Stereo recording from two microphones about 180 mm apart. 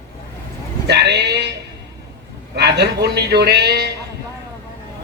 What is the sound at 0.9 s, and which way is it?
Speech, 70° right (ahead or behind).